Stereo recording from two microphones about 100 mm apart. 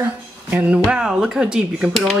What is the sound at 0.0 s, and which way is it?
Speech, 15° right (ahead or behind).